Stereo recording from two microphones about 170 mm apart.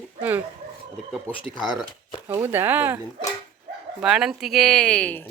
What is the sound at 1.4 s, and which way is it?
Speech, 30° left (ahead or behind).